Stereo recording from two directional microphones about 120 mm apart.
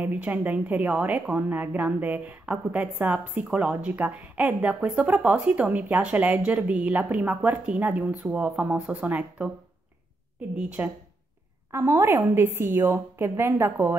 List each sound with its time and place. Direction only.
0.0 s a woman's voice: 15° right (ahead or behind)
10.8 s a woman's voice: 15° right (ahead or behind)